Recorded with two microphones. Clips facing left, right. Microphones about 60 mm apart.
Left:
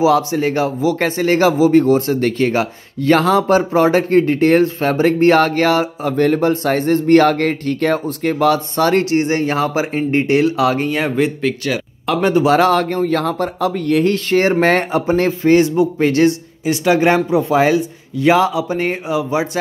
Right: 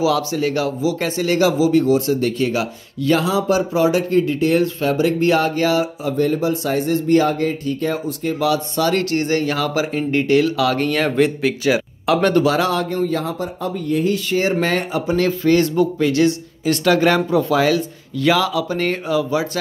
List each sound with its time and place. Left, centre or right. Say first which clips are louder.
0.0 s a man's voice: left 4 dB; left
8.5 s speech: left 4 dB; left
10.8 s a man's voice: even; centre
11.6 s a sound: right 2 dB; centre
12.2 s a man's voice: left 2 dB; centre
12.4 s speech: left 5 dB; left
12.8 s speech: left 4 dB; left
14.1 s speech: left 4 dB; left
15.6 s a man's voice: left 2 dB; centre
16.0 s speech: left 4 dB; left
16.6 s speech: left 2 dB; centre